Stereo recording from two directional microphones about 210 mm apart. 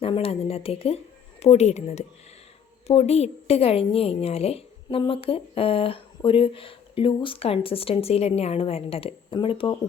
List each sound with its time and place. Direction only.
0.0 s a woman's voice: 30° left (ahead or behind)